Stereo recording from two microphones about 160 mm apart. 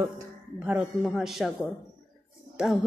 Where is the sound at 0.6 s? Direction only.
5° right (ahead or behind).